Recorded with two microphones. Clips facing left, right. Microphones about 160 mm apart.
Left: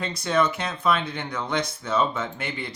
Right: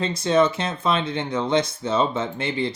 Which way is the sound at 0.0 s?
25° right (ahead or behind).